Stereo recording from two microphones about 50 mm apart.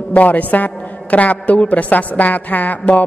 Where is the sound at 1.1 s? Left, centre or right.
Left.